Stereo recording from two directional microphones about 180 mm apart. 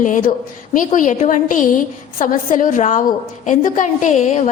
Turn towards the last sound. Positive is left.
turn(degrees=40)  # may be behind; listen again after turning